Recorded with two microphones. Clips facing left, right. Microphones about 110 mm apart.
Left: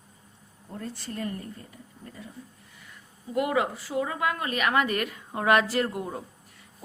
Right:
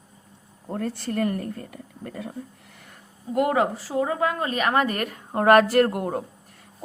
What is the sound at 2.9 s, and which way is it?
A woman's voice, 45° right (ahead or behind).